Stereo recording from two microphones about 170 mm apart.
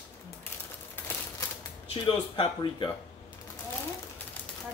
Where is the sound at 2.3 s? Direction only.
30° left (ahead or behind).